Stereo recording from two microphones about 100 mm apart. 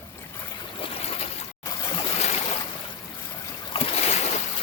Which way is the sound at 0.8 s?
90° left.